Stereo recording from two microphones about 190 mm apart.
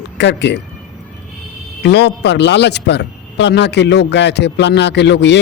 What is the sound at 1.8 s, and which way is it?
A man's voice, 60° left (ahead or behind).